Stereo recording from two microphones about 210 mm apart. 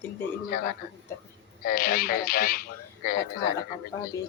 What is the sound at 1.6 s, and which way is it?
Speech, 40° left (ahead or behind).